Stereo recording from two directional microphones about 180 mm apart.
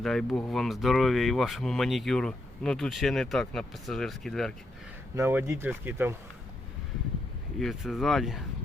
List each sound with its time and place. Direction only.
0.0 s speech: centre (ahead or behind)
5.1 s speech: 10° right (ahead or behind)
7.6 s speech: centre (ahead or behind)